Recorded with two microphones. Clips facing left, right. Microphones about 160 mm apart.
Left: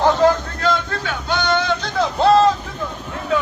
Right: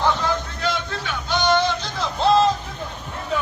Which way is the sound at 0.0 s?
45° left (ahead or behind).